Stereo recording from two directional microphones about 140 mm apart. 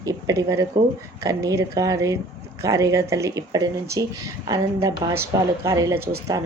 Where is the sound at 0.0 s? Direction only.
25° right (ahead or behind).